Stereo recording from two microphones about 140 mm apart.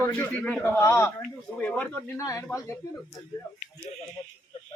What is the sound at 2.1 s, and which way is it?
Speech, 20° left (ahead or behind).